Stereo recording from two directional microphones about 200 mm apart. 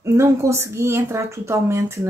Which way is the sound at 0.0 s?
15° right (ahead or behind).